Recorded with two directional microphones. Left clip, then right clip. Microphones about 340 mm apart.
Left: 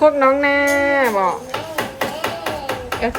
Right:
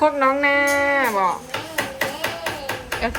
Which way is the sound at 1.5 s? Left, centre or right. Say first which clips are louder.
Left 2 dB; left.